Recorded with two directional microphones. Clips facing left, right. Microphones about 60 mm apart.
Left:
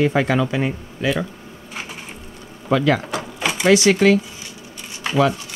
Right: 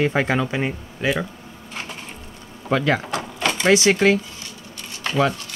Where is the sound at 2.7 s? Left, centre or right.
Right.